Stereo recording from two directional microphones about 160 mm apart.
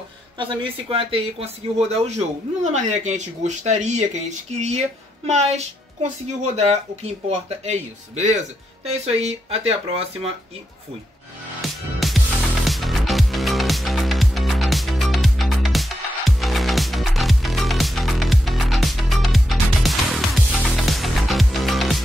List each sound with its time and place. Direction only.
0.4 s speech: 30° right (ahead or behind)
12.0 s music: centre (ahead or behind)